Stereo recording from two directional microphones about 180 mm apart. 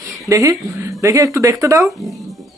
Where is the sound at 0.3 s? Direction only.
20° right (ahead or behind).